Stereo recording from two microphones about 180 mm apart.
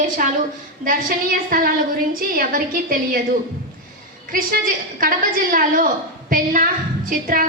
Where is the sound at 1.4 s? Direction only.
50° right (ahead or behind).